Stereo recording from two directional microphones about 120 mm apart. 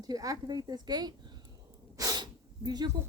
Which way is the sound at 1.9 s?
35° right (ahead or behind).